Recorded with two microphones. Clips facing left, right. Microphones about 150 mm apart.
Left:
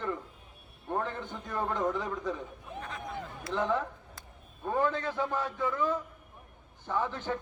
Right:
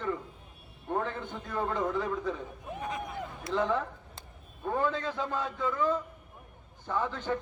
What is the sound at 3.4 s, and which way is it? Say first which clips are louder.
A man's voice: right 1 dB; 15° left (ahead or behind).